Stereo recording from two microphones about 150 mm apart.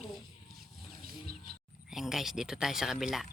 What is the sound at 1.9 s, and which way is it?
A woman's voice, centre (ahead or behind).